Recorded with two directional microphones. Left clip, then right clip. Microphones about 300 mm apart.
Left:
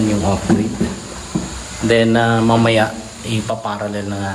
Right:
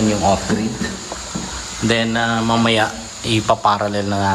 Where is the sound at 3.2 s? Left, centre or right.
Centre.